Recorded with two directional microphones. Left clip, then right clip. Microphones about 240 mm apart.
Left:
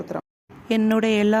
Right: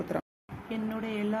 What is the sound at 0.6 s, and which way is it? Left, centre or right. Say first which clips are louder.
Speech: left 15 dB; left.